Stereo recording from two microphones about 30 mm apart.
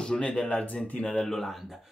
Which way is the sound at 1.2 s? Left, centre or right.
Centre.